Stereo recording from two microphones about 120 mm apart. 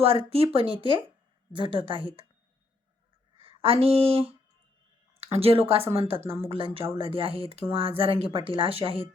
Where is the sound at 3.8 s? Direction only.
55° right (ahead or behind).